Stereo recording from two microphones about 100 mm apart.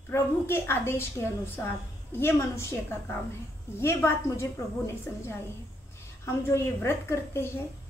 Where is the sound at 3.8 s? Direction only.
25° left (ahead or behind).